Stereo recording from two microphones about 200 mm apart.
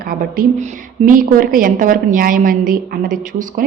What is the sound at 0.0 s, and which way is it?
A woman's voice, 45° right (ahead or behind).